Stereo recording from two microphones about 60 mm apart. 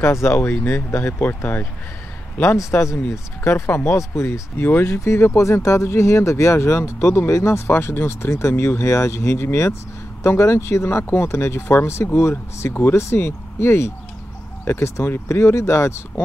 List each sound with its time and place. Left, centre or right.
0.0 s speech: left
2.8 s speech: left